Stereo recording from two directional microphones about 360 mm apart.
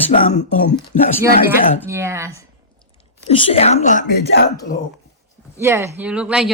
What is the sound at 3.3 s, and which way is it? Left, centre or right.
A woman's voice, centre.